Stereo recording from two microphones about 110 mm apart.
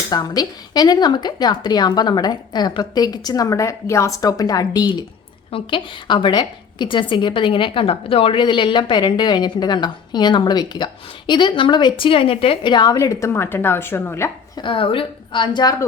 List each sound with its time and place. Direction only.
0.1 s a woman's voice: 35° left (ahead or behind)
5.5 s a woman's voice: 55° left (ahead or behind); by 14.3 s 20° left (ahead or behind)
14.5 s a woman's voice: 50° left (ahead or behind)